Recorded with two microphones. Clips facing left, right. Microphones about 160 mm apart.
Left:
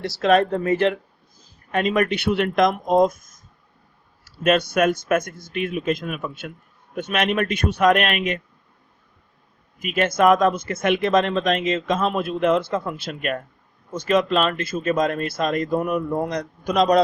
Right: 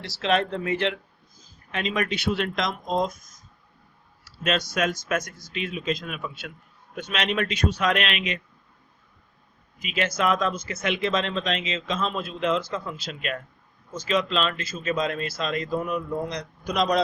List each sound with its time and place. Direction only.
0.0 s speech: 45° left (ahead or behind)
1.4 s speech: 55° left (ahead or behind)
9.7 s speech: 50° left (ahead or behind)